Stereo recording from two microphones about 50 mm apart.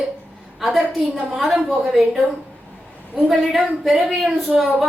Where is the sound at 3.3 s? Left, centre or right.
Centre.